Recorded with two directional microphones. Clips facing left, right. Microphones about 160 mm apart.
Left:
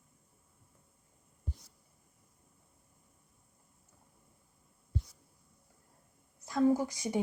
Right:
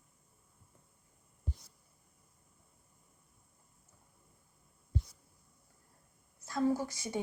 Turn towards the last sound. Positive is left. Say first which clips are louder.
# left 4 dB
turn(degrees=15)  # may be behind; listen again after turning